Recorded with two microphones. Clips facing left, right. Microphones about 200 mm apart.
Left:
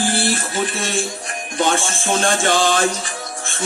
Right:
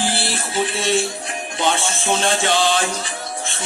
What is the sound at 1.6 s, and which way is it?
Music, 45° left (ahead or behind).